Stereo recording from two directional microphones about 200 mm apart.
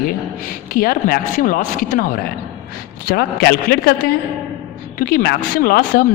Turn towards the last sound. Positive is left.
turn(degrees=50)  # may be behind; listen again after turning